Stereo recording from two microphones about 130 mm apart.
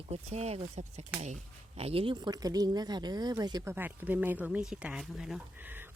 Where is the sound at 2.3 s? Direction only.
30° right (ahead or behind).